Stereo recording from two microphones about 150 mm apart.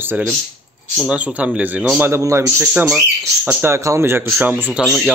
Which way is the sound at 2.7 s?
5° right (ahead or behind).